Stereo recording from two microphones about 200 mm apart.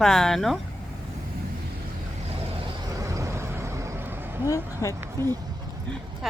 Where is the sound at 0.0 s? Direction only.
Centre (ahead or behind).